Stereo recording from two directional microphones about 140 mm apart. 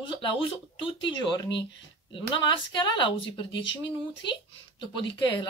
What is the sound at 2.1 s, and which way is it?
Speech, 35° left (ahead or behind).